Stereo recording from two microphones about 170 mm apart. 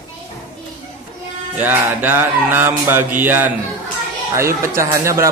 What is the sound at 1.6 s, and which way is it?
Mantra, 10° right (ahead or behind).